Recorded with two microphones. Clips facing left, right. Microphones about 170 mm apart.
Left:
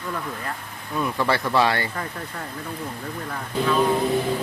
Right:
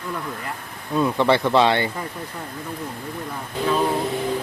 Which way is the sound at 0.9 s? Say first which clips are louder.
Right 5 dB; 25° right (ahead or behind).